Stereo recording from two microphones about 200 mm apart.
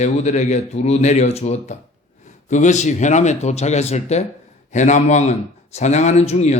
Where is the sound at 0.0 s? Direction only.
35° left (ahead or behind).